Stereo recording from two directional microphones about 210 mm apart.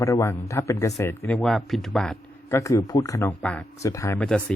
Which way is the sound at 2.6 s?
15° left (ahead or behind).